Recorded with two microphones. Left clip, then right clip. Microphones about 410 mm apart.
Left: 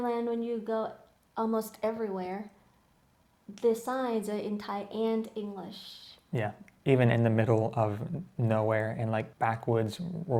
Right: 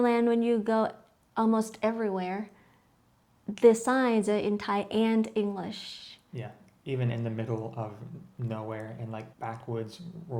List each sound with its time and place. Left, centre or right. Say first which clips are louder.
0.0 s a woman's voice: right 6 dB; right
3.5 s speech: right 7 dB; right
6.3 s speech: left 12 dB; left